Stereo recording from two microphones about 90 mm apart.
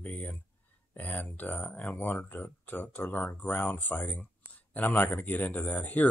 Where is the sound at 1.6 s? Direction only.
5° left (ahead or behind).